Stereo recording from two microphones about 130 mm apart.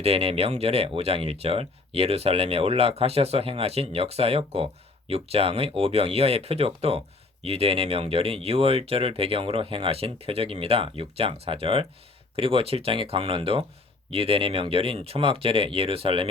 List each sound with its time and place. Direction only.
0.0 s speech: 50° right (ahead or behind)